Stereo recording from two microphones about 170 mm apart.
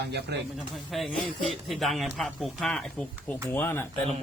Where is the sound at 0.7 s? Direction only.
Centre (ahead or behind).